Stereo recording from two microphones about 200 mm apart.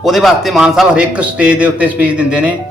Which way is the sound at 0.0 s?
Centre (ahead or behind).